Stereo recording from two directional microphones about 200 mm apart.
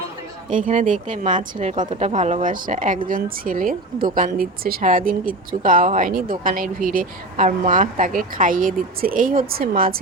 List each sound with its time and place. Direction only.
0.5 s speech: 40° right (ahead or behind)
1.7 s speech: 25° right (ahead or behind); by 9.9 s 45° right (ahead or behind)